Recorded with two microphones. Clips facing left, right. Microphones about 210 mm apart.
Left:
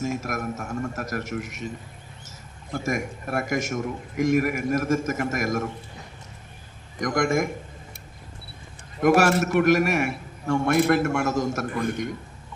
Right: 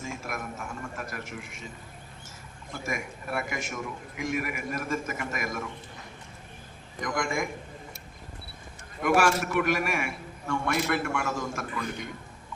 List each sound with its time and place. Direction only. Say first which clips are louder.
0.0 s a man's voice: left 8 dB; 40° left (ahead or behind)
2.7 s a man's voice: left 7 dB; 45° left (ahead or behind)
7.0 s a man's voice: left 7 dB; 45° left (ahead or behind)
9.0 s a man's voice: left 5 dB; 40° left (ahead or behind)